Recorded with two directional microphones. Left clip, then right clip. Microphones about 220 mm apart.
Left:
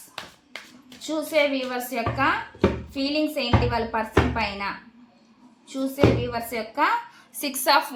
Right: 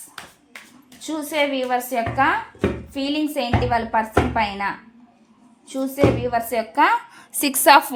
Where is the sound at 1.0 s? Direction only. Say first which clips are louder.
Even; 35° right (ahead or behind).